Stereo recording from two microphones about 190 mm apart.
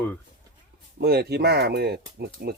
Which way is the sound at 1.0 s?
55° right (ahead or behind).